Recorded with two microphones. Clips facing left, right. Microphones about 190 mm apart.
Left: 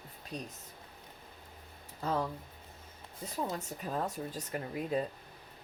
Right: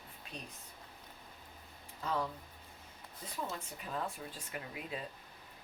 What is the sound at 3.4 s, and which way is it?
Speech, 40° left (ahead or behind).